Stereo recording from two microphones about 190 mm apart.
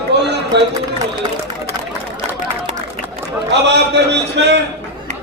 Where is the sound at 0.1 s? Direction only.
65° right (ahead or behind).